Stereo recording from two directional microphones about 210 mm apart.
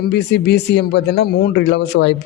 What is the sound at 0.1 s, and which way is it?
A man's voice, 50° left (ahead or behind).